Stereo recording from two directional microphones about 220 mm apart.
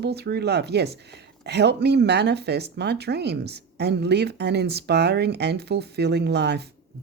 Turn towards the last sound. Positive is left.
turn(degrees=-50)  # may be behind; listen again after turning